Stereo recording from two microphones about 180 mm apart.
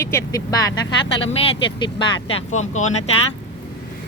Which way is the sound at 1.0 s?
90° left.